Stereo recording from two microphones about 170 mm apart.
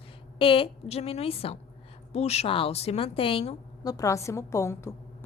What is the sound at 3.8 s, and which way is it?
A woman's voice, 20° left (ahead or behind).